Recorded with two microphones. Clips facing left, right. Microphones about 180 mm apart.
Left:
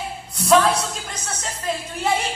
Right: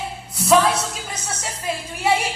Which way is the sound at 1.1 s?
10° right (ahead or behind).